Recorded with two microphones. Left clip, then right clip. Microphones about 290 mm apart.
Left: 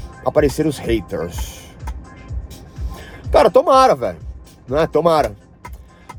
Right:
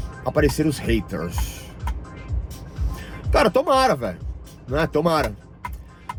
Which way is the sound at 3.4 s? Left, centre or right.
Left.